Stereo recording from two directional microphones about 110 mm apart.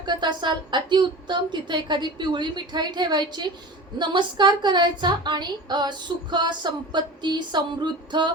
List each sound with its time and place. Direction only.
0.0 s a woman's voice: 45° right (ahead or behind)